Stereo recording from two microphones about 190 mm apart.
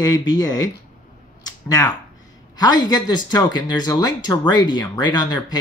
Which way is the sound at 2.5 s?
20° left (ahead or behind).